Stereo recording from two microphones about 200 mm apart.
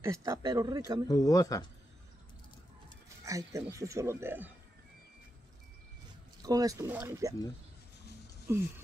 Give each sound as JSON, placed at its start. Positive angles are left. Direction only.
{"t": 0.0, "sound": "speech", "side_deg": -15}
{"t": 1.0, "sound": "speech", "side_deg": 20}
{"t": 3.3, "sound": "speech", "side_deg": -15}
{"t": 6.4, "sound": "speech", "side_deg": -20}
{"t": 8.5, "sound": "speech", "side_deg": -10}